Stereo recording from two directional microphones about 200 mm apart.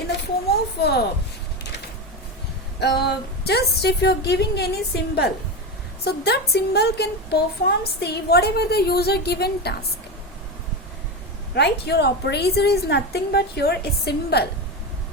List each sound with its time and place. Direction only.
0.8 s speech: 55° left (ahead or behind)
2.8 s a woman's voice: 55° left (ahead or behind)
11.5 s a woman's voice: 55° left (ahead or behind)